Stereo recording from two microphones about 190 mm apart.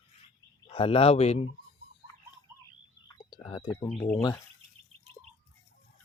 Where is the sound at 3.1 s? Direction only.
25° left (ahead or behind).